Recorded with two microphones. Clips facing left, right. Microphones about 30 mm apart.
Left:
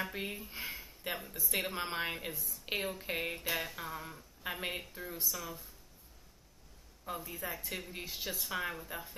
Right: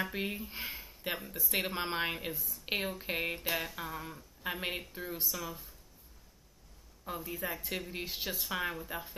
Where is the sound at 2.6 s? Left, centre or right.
Centre.